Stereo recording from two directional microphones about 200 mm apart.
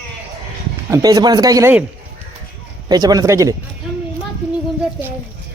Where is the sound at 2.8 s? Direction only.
20° right (ahead or behind).